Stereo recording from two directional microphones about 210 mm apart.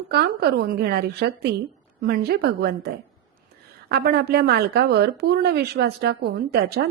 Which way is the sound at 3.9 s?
50° right (ahead or behind).